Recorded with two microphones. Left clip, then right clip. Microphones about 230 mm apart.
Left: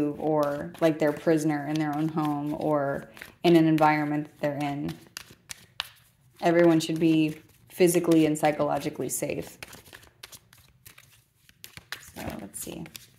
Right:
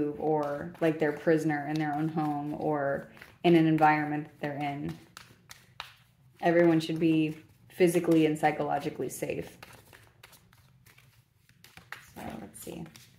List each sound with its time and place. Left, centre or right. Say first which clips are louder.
0.0 s speech: left 3 dB; left
9.8 s shuffling cards: left 7 dB; left
11.6 s a sound: left 5 dB; left